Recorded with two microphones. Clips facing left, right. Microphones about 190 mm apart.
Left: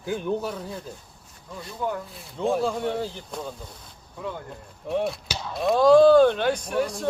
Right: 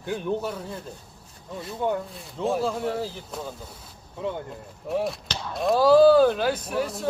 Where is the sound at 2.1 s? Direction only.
Centre (ahead or behind).